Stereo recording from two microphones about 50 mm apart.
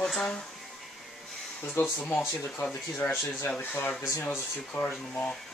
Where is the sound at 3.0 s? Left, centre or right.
Left.